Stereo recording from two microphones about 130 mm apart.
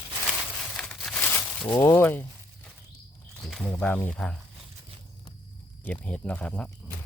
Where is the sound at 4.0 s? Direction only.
10° left (ahead or behind).